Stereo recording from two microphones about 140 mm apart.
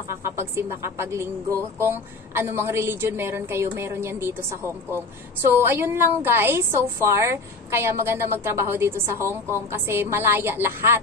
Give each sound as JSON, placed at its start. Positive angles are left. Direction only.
{"t": 0.2, "sound": "a woman's voice", "side_deg": -20}
{"t": 5.5, "sound": "a woman's voice", "side_deg": -15}